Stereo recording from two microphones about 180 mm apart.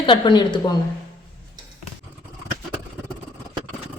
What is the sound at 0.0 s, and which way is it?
Speech, 25° left (ahead or behind).